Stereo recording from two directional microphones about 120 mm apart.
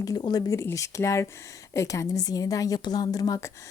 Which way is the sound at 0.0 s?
35° left (ahead or behind).